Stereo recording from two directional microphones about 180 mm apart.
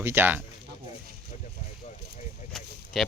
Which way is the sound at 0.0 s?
10° right (ahead or behind).